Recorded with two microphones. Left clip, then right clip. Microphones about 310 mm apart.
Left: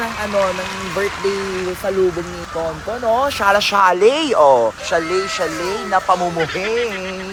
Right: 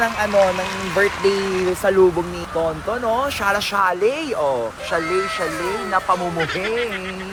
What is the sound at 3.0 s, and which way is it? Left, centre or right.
Speech, centre.